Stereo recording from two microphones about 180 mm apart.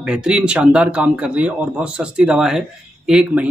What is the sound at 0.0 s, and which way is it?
Speech, 5° right (ahead or behind).